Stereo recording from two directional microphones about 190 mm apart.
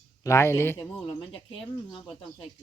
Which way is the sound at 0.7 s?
25° left (ahead or behind).